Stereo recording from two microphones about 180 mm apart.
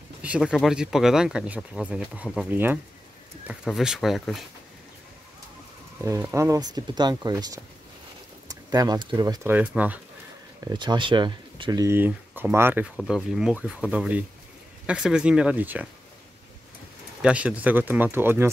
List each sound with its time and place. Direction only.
0.2 s speech: 5° right (ahead or behind)
6.3 s speech: 15° right (ahead or behind)
10.6 s speech: 25° right (ahead or behind)
17.2 s speech: 5° right (ahead or behind)